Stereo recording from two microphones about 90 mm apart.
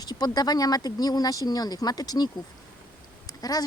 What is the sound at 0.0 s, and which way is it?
Speech, 50° left (ahead or behind).